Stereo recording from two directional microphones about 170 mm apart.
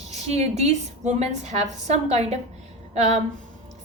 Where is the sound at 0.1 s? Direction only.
40° right (ahead or behind).